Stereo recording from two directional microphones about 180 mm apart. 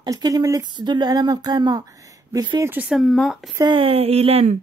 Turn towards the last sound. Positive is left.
turn(degrees=-35)  # may be behind; listen again after turning